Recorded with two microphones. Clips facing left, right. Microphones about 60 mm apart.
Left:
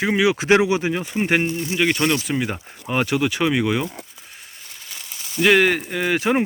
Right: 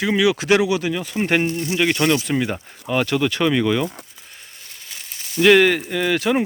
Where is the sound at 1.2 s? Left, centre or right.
Centre.